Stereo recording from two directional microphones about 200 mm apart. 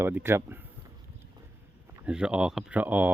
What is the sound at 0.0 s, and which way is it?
Speech, 10° right (ahead or behind).